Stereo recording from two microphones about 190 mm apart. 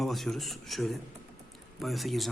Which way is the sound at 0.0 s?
Centre (ahead or behind).